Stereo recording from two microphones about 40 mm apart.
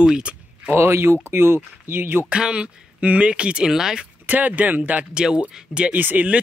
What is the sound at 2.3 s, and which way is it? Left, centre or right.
Speech, right.